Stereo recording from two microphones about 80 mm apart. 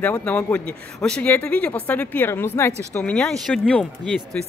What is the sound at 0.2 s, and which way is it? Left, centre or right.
Speech, centre.